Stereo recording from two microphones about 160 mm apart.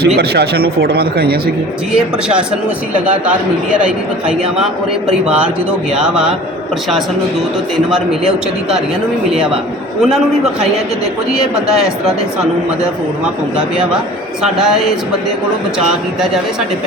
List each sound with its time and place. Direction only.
0.2 s speech: 85° right
2.9 s a man's voice: 5° right (ahead or behind)
6.0 s speech: 5° right (ahead or behind)
10.0 s speech: centre (ahead or behind)
14.4 s speech: centre (ahead or behind)